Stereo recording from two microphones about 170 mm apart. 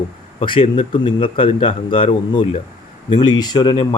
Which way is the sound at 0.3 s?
30° left (ahead or behind).